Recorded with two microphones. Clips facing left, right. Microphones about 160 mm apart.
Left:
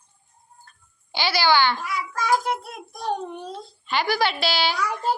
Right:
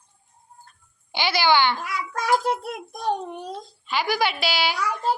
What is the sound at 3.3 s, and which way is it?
Speech, 15° right (ahead or behind).